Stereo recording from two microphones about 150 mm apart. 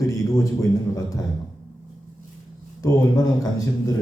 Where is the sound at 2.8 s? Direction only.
25° left (ahead or behind).